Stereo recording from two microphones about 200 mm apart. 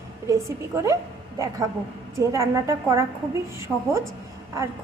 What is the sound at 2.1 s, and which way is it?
A woman's voice, 15° right (ahead or behind).